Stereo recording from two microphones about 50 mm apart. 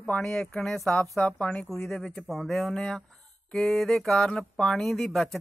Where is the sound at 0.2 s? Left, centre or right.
Centre.